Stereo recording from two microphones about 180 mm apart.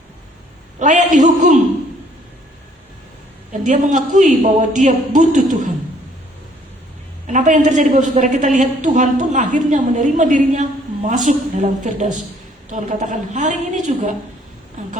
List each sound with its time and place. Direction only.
0.8 s a woman's voice: 45° right (ahead or behind)
3.6 s a woman's voice: 45° right (ahead or behind)
7.3 s a woman's voice: 45° right (ahead or behind)